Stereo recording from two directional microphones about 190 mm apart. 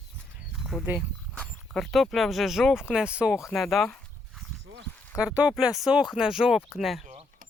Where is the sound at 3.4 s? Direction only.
Centre (ahead or behind).